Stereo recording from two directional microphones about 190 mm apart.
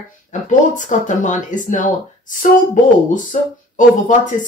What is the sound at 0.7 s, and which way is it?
Speech, 40° left (ahead or behind).